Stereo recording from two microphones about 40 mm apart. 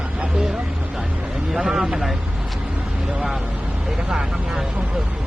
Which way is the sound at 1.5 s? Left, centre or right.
Centre.